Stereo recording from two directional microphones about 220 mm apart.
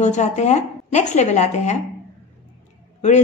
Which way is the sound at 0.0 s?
30° left (ahead or behind).